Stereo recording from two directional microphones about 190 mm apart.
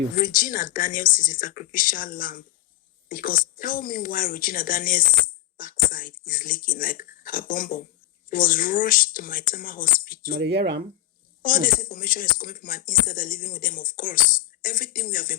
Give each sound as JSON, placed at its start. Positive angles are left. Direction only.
{"t": 0.2, "sound": "a woman's voice", "side_deg": 45}
{"t": 10.4, "sound": "speech", "side_deg": -65}
{"t": 11.4, "sound": "a woman's voice", "side_deg": 45}